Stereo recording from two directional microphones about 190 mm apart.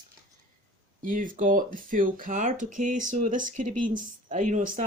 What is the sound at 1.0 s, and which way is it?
Speech, 45° right (ahead or behind).